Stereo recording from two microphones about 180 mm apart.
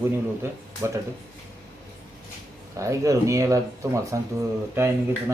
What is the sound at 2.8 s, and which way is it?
Speech, 15° right (ahead or behind).